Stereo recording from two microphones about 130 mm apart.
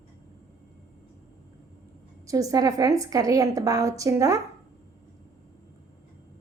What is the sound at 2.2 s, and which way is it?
A woman's voice, 25° right (ahead or behind).